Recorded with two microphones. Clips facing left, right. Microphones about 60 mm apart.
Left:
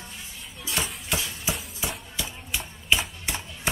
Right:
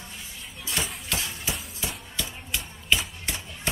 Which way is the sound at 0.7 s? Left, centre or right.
Centre.